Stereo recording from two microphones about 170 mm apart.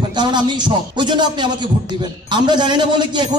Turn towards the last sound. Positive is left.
turn(degrees=-25)  # may be behind; listen again after turning